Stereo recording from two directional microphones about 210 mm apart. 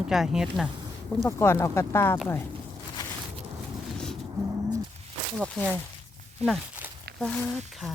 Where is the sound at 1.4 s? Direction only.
10° left (ahead or behind).